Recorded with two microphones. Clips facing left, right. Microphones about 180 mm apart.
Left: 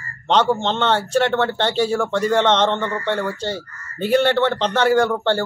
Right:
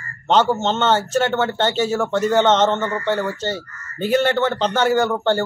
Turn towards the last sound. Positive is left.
turn(degrees=-5)  # may be behind; listen again after turning